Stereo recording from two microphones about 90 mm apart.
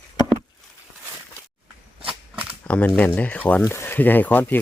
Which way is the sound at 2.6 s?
15° left (ahead or behind).